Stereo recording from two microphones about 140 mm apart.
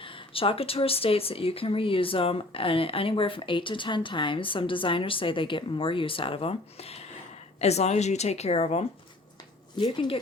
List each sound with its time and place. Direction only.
0.0 s a woman's voice: 40° left (ahead or behind)
9.7 s speech: 35° left (ahead or behind)